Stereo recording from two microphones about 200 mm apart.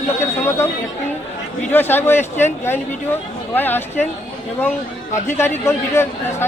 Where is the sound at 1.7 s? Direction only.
10° left (ahead or behind).